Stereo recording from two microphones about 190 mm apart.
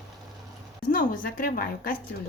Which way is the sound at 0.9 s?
50° left (ahead or behind).